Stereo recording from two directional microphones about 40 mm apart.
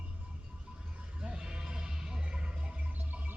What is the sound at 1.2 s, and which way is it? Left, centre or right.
Music, right.